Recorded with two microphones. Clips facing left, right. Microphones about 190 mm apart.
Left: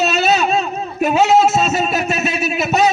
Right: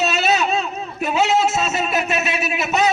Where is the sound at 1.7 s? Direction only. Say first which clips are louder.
Left 3 dB; 40° left (ahead or behind).